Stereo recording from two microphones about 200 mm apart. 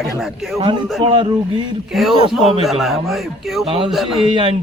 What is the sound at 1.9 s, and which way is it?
A man's voice, centre (ahead or behind).